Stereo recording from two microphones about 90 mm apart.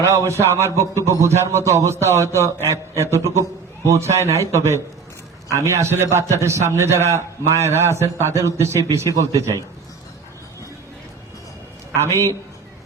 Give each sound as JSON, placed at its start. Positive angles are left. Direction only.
{"t": 0.3, "sound": "a man's voice", "side_deg": -35}
{"t": 11.9, "sound": "a man's voice", "side_deg": -35}